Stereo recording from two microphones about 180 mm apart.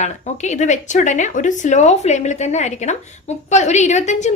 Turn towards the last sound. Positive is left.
turn(degrees=40)  # may be behind; listen again after turning